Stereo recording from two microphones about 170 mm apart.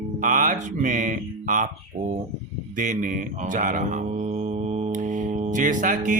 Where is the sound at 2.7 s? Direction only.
50° right (ahead or behind).